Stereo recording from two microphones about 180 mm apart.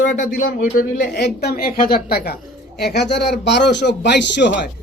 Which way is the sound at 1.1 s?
65° left (ahead or behind).